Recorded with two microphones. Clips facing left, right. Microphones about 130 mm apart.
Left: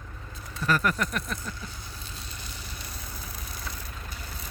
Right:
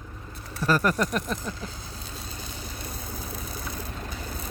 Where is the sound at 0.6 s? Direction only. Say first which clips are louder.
Right 3 dB; 35° right (ahead or behind).